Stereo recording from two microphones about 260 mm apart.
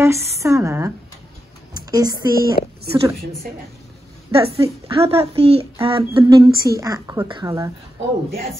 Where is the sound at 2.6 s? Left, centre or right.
Left.